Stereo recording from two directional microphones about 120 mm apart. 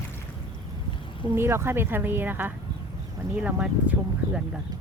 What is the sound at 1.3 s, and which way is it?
Speech, 20° right (ahead or behind).